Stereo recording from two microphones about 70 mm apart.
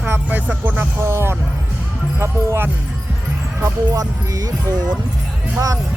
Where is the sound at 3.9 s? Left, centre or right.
Right.